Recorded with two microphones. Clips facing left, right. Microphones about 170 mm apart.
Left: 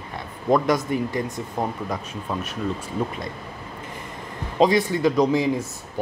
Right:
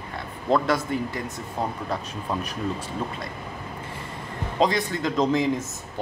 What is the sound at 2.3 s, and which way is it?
Speech, centre (ahead or behind).